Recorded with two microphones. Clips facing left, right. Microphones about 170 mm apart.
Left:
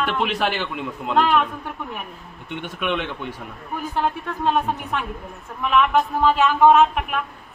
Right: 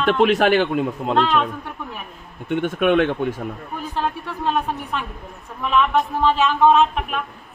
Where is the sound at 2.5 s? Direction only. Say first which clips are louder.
Right 8 dB; 50° right (ahead or behind).